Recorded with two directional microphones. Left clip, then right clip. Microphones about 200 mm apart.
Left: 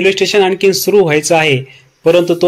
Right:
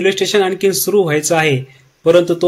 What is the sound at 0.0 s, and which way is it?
A man's voice, 5° left (ahead or behind).